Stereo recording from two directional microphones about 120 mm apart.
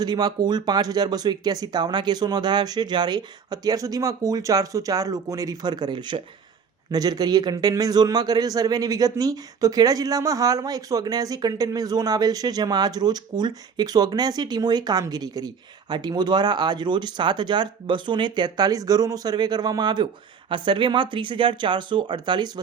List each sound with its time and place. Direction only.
0.0 s a man's voice: 35° right (ahead or behind)